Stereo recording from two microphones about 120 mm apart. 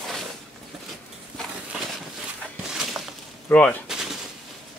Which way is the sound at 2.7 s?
5° right (ahead or behind).